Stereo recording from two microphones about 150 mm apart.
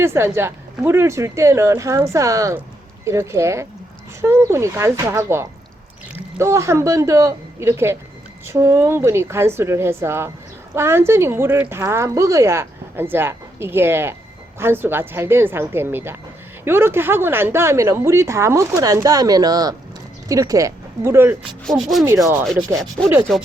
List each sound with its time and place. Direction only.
0.0 s a woman's voice: 15° right (ahead or behind)
21.6 s rub: centre (ahead or behind)
22.0 s a woman's voice: 15° right (ahead or behind)